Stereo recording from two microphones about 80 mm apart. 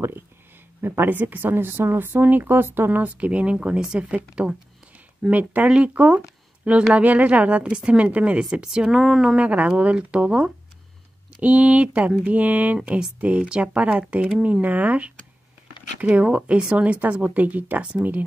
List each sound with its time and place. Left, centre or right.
0.7 s a woman's voice: right